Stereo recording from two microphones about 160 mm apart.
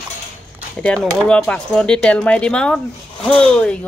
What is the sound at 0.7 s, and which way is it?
Speech, 5° left (ahead or behind).